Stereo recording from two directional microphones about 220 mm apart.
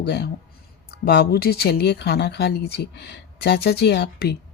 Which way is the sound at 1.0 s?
45° left (ahead or behind).